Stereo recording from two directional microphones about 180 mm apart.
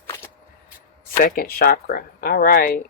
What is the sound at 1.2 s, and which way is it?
Speech, 55° left (ahead or behind).